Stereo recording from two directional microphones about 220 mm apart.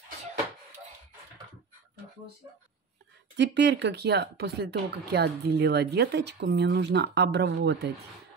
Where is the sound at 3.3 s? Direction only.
50° right (ahead or behind).